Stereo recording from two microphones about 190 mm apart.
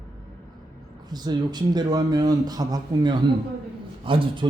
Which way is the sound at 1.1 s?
20° right (ahead or behind).